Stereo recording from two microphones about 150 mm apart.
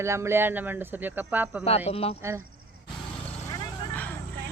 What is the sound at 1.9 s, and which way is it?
Speech, 40° left (ahead or behind).